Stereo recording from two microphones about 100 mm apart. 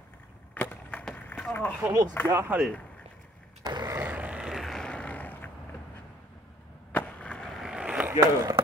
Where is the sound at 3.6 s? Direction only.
40° right (ahead or behind).